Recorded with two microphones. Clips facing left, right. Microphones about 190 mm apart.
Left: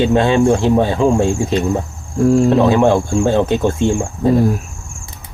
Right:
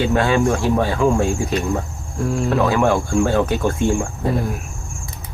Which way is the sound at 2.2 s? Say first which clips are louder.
Left 10 dB; 40° left (ahead or behind).